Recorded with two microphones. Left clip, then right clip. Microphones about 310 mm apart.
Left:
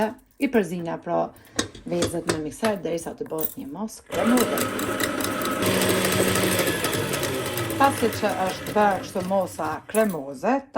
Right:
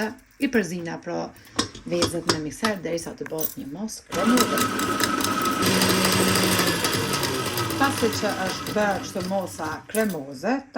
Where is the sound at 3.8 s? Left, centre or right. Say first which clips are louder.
Even; centre.